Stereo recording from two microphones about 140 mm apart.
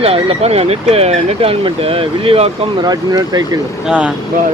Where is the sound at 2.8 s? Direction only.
30° right (ahead or behind).